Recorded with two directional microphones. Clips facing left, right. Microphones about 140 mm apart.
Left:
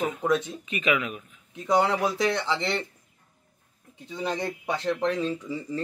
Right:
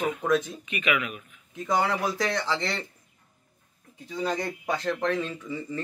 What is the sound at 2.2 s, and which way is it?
Speech, 10° left (ahead or behind).